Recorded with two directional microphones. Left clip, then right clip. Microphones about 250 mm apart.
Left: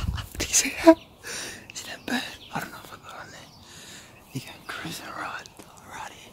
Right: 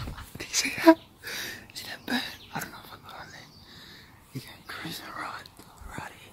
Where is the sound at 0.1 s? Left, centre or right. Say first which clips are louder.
Left 6 dB; centre.